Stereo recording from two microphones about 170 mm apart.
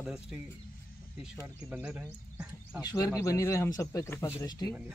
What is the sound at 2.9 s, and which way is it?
Speech, 20° left (ahead or behind).